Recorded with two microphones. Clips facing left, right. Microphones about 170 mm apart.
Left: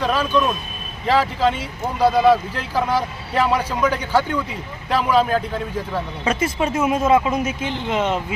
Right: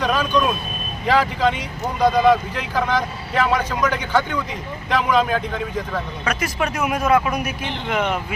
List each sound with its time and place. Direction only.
0.0 s vehicle: 5° left (ahead or behind)
1.0 s speech: 5° left (ahead or behind)
6.2 s speech: 25° left (ahead or behind)